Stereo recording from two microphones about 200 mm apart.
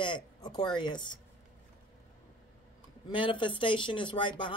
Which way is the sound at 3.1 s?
25° left (ahead or behind).